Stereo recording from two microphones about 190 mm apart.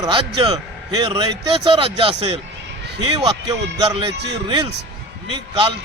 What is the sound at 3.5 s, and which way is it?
Speech, 20° right (ahead or behind).